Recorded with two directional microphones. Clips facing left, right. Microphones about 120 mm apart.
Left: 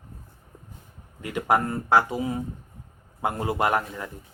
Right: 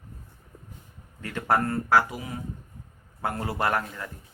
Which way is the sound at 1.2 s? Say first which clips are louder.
Left 2 dB; 15° left (ahead or behind).